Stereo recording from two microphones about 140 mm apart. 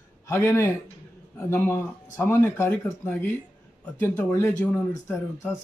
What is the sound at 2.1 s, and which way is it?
Speech, 20° left (ahead or behind).